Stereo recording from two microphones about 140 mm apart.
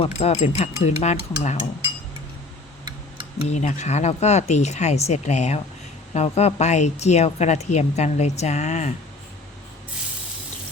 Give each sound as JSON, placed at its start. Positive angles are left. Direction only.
{"t": 0.0, "sound": "speech", "side_deg": 45}
{"t": 3.5, "sound": "speech", "side_deg": 55}